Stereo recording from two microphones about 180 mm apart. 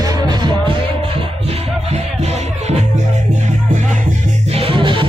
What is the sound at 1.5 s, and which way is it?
Music, 35° right (ahead or behind).